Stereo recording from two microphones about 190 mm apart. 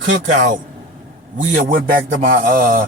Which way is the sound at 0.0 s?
45° right (ahead or behind).